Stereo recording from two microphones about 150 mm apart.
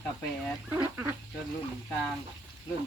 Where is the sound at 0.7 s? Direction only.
15° right (ahead or behind).